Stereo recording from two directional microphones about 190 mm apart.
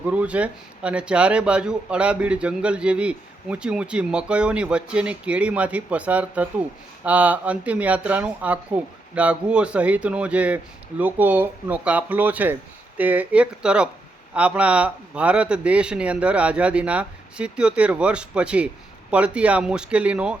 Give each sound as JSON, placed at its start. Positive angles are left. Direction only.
{"t": 0.0, "sound": "speech", "side_deg": -5}